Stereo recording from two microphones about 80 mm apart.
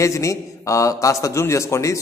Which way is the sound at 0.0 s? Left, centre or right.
Left.